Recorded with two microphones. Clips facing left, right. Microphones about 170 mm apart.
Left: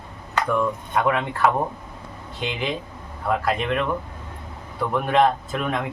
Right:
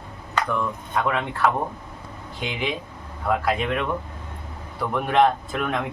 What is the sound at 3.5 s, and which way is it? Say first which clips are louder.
Speech: even; centre (ahead or behind).